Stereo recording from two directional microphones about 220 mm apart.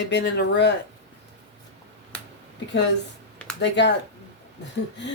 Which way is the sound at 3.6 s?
50° left (ahead or behind).